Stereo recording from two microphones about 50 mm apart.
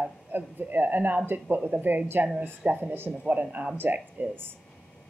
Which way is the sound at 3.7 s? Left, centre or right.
Right.